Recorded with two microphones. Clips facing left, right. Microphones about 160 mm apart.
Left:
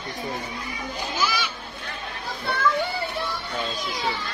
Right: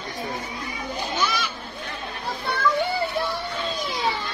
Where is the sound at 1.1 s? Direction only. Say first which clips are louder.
Even; 5° left (ahead or behind).